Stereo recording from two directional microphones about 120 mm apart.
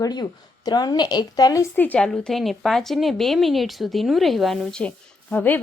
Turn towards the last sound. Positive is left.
turn(degrees=15)  # may be behind; listen again after turning